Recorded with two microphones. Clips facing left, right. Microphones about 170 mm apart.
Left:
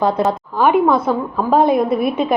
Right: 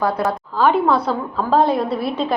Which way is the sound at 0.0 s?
20° left (ahead or behind).